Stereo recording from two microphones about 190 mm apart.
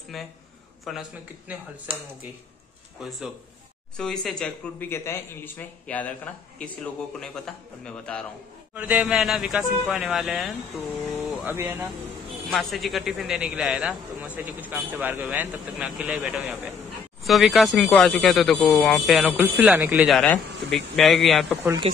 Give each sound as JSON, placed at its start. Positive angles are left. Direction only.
{"t": 0.1, "sound": "a man's voice", "side_deg": 0}
{"t": 3.0, "sound": "a man's voice", "side_deg": 0}
{"t": 8.7, "sound": "a man's voice", "side_deg": -5}
{"t": 11.4, "sound": "speech", "side_deg": -10}
{"t": 12.4, "sound": "a man's voice", "side_deg": 0}
{"t": 21.8, "sound": "speech", "side_deg": -30}